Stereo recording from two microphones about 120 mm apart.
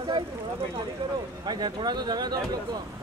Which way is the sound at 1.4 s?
35° right (ahead or behind).